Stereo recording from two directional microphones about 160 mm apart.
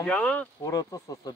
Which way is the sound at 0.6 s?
25° left (ahead or behind).